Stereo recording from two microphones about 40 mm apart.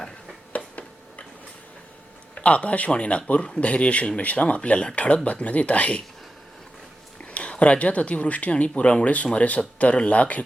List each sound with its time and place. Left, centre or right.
0.5 s a sound: left
2.3 s speech: left
7.3 s speech: left